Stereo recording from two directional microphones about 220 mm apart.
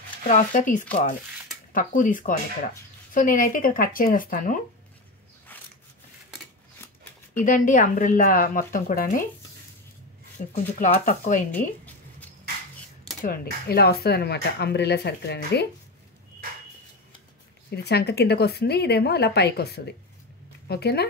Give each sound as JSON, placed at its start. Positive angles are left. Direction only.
{"t": 0.3, "sound": "speech", "side_deg": 35}
{"t": 7.3, "sound": "speech", "side_deg": 40}
{"t": 10.5, "sound": "speech", "side_deg": 35}
{"t": 13.2, "sound": "speech", "side_deg": 45}
{"t": 17.6, "sound": "speech", "side_deg": 50}